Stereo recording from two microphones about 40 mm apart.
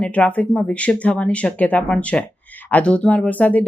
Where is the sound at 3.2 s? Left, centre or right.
Left.